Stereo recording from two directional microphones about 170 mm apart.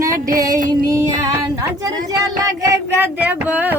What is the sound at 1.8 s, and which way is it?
Child singing, 20° right (ahead or behind).